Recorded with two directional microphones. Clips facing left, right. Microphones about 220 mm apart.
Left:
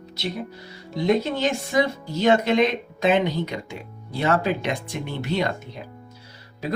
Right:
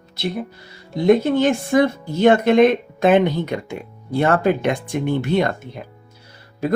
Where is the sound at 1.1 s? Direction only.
55° right (ahead or behind).